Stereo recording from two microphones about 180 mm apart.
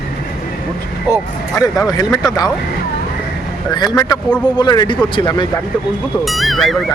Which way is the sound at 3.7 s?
25° left (ahead or behind).